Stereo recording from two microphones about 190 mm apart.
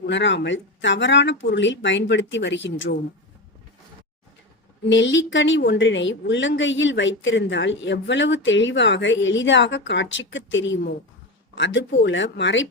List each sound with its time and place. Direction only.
0.0 s a woman's voice: 70° left (ahead or behind)
4.9 s a woman's voice: 70° left (ahead or behind)